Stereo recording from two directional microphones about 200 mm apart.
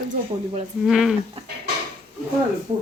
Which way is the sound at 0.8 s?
Centre (ahead or behind).